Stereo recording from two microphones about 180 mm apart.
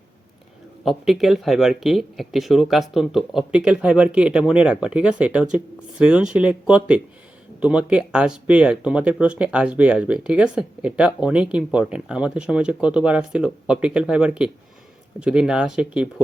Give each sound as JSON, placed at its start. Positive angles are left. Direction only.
{"t": 0.9, "sound": "speech", "side_deg": 0}